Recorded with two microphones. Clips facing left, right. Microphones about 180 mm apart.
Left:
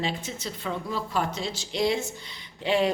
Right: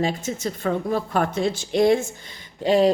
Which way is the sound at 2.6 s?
40° right (ahead or behind).